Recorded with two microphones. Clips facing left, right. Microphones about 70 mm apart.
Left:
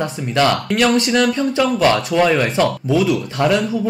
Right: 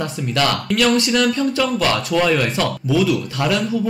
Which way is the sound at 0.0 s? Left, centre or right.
Left.